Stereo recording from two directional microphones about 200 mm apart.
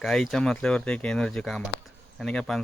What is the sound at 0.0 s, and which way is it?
Speech, centre (ahead or behind).